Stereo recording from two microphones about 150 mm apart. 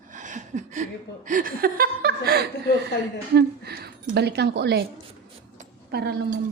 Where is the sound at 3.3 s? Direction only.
90° right.